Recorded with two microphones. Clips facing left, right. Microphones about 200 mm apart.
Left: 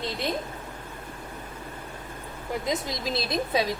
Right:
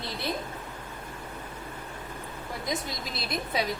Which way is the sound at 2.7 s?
20° left (ahead or behind).